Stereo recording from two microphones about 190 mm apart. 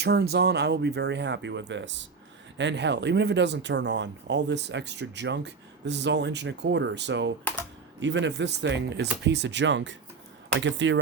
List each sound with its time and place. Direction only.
0.0 s speech: 60° right (ahead or behind); by 11.0 s 75° right (ahead or behind)